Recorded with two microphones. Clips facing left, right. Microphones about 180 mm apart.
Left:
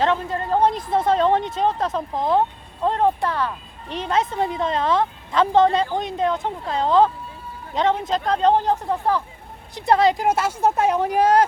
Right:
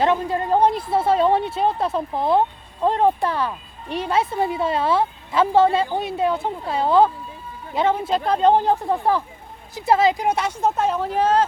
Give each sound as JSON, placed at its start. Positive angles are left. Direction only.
{"t": 0.0, "sound": "speech", "side_deg": -15}
{"t": 9.7, "sound": "speech", "side_deg": -5}